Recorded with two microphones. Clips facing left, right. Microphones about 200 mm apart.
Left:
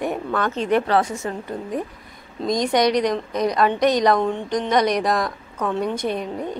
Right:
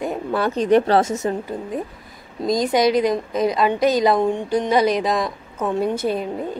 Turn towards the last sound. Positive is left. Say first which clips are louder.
# right 2 dB
turn(degrees=-5)  # may be behind; listen again after turning